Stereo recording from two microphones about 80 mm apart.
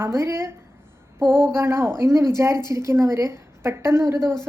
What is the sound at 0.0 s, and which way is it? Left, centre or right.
A woman's voice, right.